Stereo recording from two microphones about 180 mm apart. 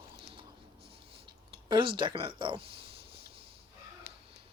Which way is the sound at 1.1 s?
25° right (ahead or behind).